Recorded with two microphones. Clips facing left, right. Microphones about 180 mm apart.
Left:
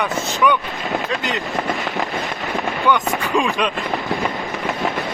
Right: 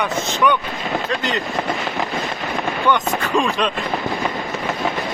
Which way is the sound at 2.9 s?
Centre (ahead or behind).